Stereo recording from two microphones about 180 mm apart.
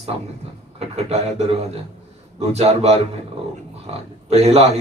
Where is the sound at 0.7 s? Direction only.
35° right (ahead or behind).